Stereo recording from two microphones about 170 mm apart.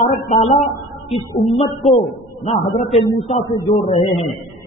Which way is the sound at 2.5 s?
40° left (ahead or behind).